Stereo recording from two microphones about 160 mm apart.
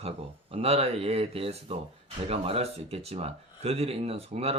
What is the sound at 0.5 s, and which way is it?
Speech, 40° right (ahead or behind).